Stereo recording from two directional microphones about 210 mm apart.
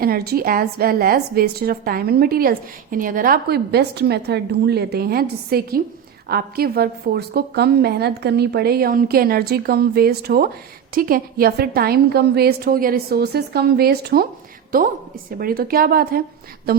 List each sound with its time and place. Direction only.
0.0 s a woman's voice: 45° right (ahead or behind)
15.4 s a woman's voice: 45° right (ahead or behind)